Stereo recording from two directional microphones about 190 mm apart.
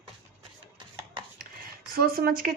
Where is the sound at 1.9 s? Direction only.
50° right (ahead or behind).